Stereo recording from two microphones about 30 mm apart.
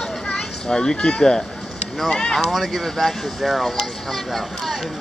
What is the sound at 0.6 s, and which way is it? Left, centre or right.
Speech, left.